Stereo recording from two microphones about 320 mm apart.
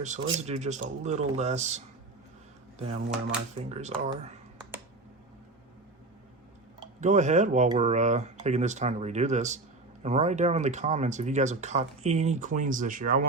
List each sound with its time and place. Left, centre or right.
0.0 s speech: right
7.0 s speech: right